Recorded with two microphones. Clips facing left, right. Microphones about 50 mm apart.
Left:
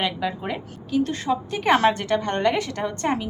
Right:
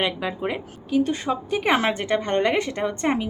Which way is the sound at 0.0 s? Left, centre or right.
Centre.